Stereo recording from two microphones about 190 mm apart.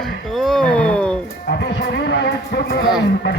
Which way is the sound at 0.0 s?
Centre (ahead or behind).